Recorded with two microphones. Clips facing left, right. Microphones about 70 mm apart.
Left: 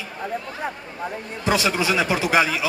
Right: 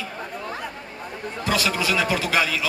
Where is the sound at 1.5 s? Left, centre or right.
Left.